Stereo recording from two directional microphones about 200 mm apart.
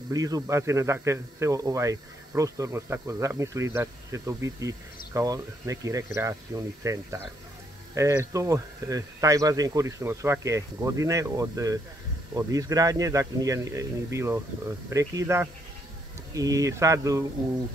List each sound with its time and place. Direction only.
0.1 s speech: 20° right (ahead or behind)